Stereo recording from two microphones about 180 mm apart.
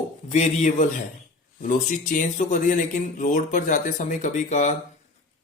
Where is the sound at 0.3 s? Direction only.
40° left (ahead or behind).